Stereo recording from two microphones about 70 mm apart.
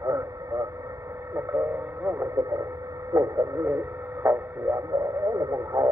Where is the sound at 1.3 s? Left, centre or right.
Right.